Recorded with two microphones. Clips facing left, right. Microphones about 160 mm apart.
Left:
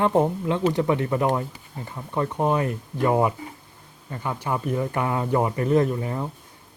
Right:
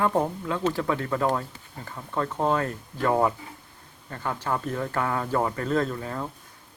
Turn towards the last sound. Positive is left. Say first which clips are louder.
# left 5 dB
turn(degrees=20)  # may be behind; listen again after turning